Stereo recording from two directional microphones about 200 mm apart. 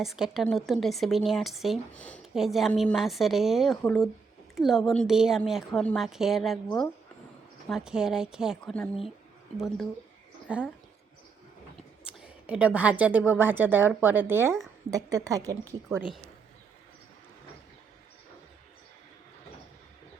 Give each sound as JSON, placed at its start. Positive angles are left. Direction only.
{"t": 0.0, "sound": "speech", "side_deg": 0}
{"t": 7.7, "sound": "speech", "side_deg": -5}
{"t": 11.8, "sound": "a woman's voice", "side_deg": -5}